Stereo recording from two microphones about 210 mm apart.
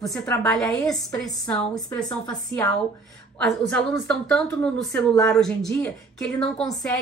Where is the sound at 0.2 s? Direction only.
10° left (ahead or behind).